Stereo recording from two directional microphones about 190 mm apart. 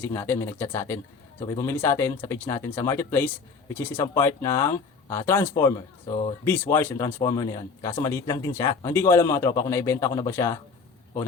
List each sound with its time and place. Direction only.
0.0 s speech: 10° left (ahead or behind)